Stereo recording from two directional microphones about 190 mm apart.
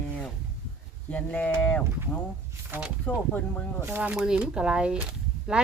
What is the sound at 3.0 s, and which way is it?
Speech, 10° left (ahead or behind).